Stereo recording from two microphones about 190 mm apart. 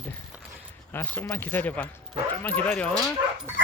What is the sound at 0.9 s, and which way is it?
Speech, 10° left (ahead or behind).